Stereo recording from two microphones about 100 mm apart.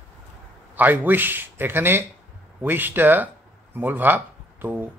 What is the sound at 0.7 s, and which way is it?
Speech, 20° right (ahead or behind).